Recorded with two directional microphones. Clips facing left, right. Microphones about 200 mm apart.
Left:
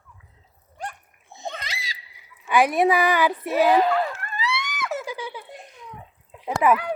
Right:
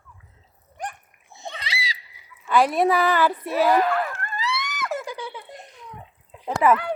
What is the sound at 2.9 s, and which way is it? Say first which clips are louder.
Speech: even; 15° left (ahead or behind).